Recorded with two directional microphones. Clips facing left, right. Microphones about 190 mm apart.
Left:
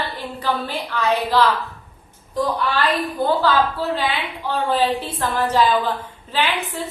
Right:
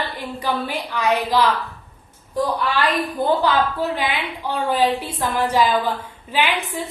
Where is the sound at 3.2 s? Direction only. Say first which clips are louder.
Left 1 dB; 15° right (ahead or behind).